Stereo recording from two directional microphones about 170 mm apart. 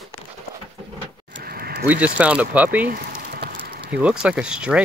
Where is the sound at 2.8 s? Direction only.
65° right (ahead or behind).